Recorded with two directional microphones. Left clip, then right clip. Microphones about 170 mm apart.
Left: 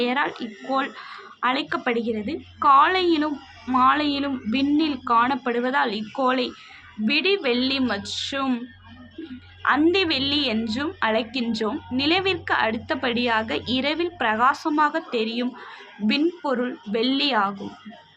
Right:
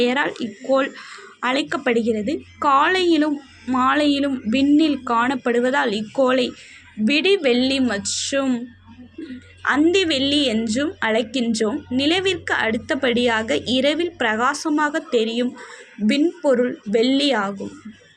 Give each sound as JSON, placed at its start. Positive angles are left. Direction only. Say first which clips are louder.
{"t": 0.0, "sound": "speech", "louder": "right 4 dB", "side_deg": -25}
{"t": 9.8, "sound": "speech", "louder": "right 3 dB", "side_deg": -20}